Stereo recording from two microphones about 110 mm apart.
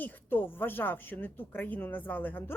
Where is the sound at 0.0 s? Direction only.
15° left (ahead or behind).